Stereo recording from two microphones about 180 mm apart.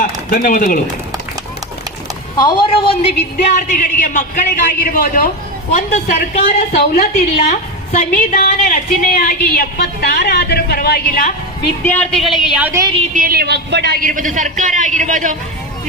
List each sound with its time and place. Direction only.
0.0 s speech: 45° left (ahead or behind)
2.4 s speech: 25° left (ahead or behind)
3.3 s a man's voice: 45° left (ahead or behind)
11.9 s a woman's voice: 5° left (ahead or behind)
12.8 s a woman's voice: 30° right (ahead or behind)
13.1 s a man's voice: 55° right (ahead or behind)